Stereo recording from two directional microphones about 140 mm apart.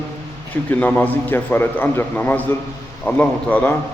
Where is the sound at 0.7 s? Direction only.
10° left (ahead or behind).